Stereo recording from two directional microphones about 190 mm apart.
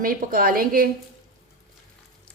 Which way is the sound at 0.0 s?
50° right (ahead or behind).